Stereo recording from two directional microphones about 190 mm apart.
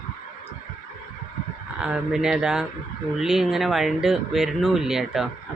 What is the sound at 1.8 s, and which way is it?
Speech, 5° right (ahead or behind).